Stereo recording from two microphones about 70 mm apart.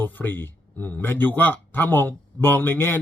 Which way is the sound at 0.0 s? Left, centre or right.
Left.